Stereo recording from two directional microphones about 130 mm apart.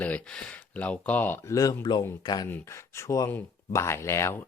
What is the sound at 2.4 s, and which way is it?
Speech, 20° left (ahead or behind).